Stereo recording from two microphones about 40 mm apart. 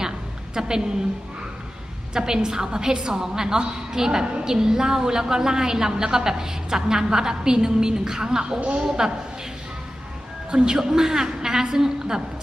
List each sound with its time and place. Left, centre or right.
0.6 s a woman's voice: centre
2.1 s a woman's voice: centre
10.5 s a woman's voice: right